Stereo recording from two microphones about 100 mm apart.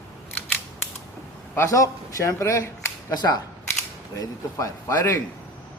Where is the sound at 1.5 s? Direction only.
30° left (ahead or behind).